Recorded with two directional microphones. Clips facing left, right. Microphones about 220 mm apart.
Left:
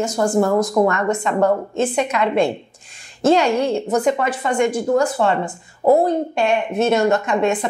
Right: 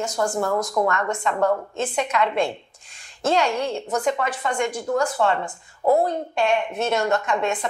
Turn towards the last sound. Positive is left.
turn(degrees=20)  # may be behind; listen again after turning